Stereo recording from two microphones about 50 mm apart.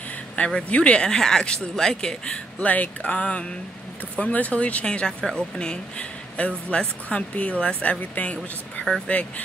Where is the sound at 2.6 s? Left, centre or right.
Left.